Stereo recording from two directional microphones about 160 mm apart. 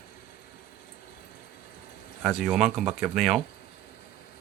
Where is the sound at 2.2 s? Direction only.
Centre (ahead or behind).